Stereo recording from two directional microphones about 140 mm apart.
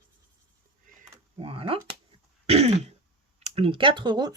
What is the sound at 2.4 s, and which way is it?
Throat clearing, 50° right (ahead or behind).